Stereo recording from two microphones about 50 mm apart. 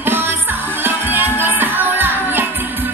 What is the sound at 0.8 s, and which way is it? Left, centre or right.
Music, right.